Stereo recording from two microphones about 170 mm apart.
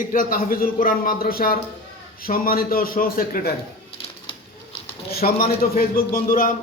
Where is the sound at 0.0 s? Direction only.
55° left (ahead or behind).